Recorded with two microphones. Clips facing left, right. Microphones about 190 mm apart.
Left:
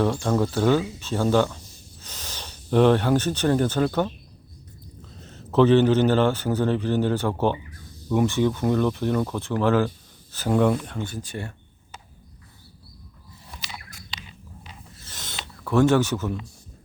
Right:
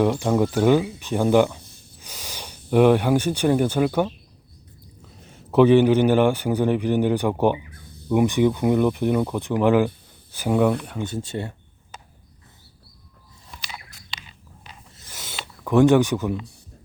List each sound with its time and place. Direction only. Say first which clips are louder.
0.0 s a man's voice: right 3 dB; 15° right (ahead or behind)
5.2 s a man's voice: right 2 dB; 10° right (ahead or behind)
11.1 s speech: right 5 dB; 25° right (ahead or behind)
14.9 s a sound: right 2 dB; 10° right (ahead or behind)